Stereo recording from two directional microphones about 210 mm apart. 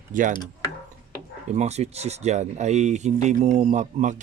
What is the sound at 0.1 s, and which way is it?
Speech, 40° right (ahead or behind).